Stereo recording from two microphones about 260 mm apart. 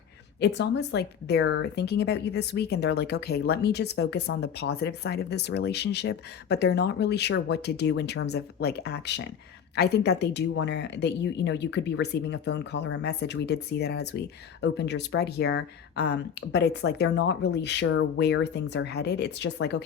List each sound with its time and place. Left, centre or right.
0.3 s speech: left